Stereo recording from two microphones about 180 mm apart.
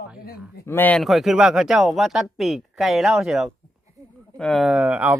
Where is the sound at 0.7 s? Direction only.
10° left (ahead or behind).